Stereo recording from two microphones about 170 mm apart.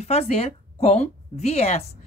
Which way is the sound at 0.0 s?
35° left (ahead or behind).